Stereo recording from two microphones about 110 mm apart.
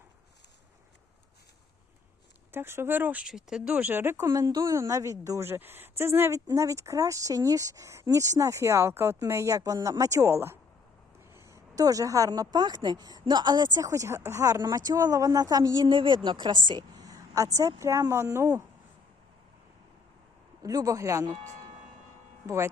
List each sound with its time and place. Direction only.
2.5 s a woman's voice: 20° right (ahead or behind)
20.6 s speech: 30° right (ahead or behind)
22.4 s speech: 25° right (ahead or behind)